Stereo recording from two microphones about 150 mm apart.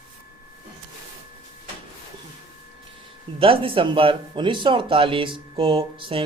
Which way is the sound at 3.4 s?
35° right (ahead or behind).